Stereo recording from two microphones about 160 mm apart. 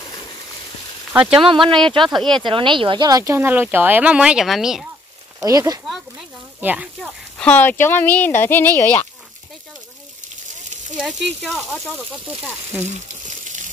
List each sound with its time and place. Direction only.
1.1 s speech: 5° right (ahead or behind)
1.4 s speech: 30° right (ahead or behind)
2.1 s speech: 5° left (ahead or behind)
2.4 s speech: 30° right (ahead or behind)
3.3 s speech: 10° right (ahead or behind)
5.4 s speech: 20° right (ahead or behind)
6.6 s speech: 10° right (ahead or behind)
7.0 s speech: 5° left (ahead or behind)
11.0 s speech: centre (ahead or behind)